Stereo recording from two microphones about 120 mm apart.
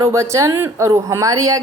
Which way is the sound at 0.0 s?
25° right (ahead or behind).